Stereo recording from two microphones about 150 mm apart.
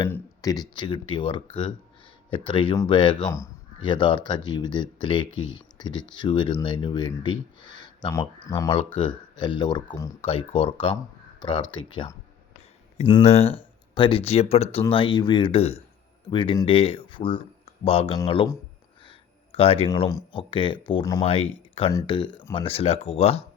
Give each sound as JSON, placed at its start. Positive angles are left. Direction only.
{"t": 0.1, "sound": "speech", "side_deg": 25}
{"t": 13.2, "sound": "speech", "side_deg": 45}
{"t": 19.0, "sound": "a sound", "side_deg": 40}
{"t": 20.1, "sound": "speech", "side_deg": 30}
{"t": 21.2, "sound": "speech", "side_deg": 40}